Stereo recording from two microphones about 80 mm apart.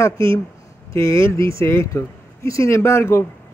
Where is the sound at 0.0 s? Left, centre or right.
Left.